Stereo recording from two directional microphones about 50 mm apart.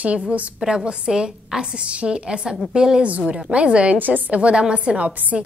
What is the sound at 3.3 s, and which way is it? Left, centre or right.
Speech, right.